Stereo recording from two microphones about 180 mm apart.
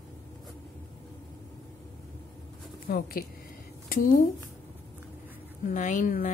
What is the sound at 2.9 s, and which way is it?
Speech, 55° left (ahead or behind).